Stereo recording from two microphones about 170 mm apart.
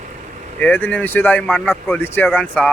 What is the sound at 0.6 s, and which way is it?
Speech, 10° left (ahead or behind).